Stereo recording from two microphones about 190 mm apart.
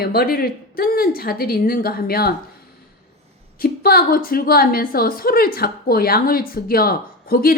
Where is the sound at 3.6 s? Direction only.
50° left (ahead or behind).